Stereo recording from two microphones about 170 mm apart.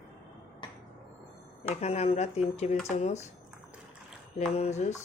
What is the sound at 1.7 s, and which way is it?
Speech, 40° left (ahead or behind).